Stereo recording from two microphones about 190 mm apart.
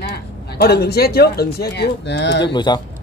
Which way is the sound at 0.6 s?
55° left (ahead or behind).